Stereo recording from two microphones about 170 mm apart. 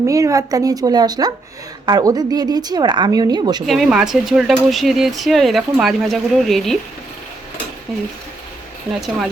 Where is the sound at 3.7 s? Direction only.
Centre (ahead or behind).